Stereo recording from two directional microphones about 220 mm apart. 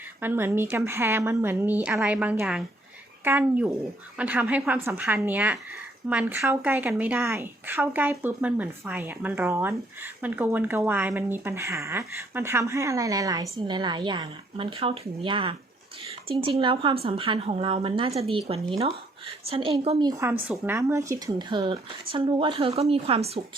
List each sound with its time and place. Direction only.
0.2 s a woman's voice: 10° right (ahead or behind)
16.6 s speech: 20° right (ahead or behind)